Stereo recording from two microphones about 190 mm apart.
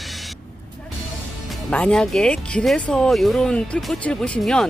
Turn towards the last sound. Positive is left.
turn(degrees=5)  # may be behind; listen again after turning